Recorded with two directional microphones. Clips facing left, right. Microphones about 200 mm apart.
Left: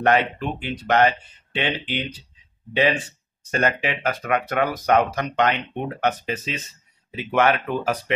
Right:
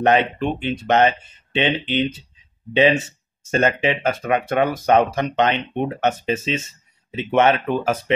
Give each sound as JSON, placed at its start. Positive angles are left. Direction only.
{"t": 0.0, "sound": "speech", "side_deg": -20}